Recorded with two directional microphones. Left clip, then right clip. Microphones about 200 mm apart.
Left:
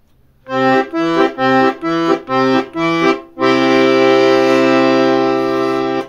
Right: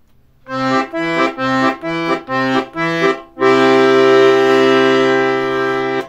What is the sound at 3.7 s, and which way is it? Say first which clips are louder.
Music: right 1 dB; 15° right (ahead or behind).